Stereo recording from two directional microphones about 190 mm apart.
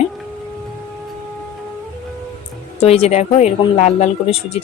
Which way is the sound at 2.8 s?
35° left (ahead or behind).